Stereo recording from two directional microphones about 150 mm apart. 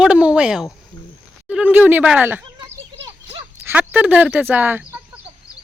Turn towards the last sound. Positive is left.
turn(degrees=-10)  # may be behind; listen again after turning